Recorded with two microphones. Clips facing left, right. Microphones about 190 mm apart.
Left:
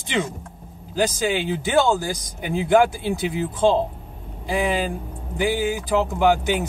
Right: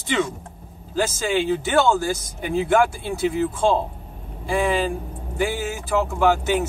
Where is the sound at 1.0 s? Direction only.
15° left (ahead or behind).